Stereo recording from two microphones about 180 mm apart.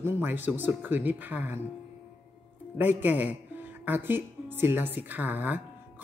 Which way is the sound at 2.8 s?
10° right (ahead or behind).